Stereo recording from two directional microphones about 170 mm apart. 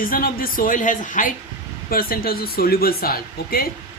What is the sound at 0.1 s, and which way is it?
A woman's voice, 55° left (ahead or behind).